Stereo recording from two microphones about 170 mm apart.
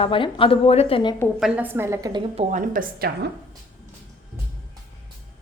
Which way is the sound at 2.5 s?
50° right (ahead or behind).